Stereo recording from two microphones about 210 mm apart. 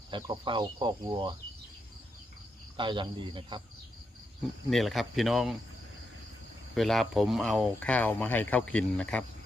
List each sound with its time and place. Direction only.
0.1 s speech: 25° right (ahead or behind)
2.7 s speech: 25° right (ahead or behind)
4.7 s speech: centre (ahead or behind)
6.7 s speech: centre (ahead or behind)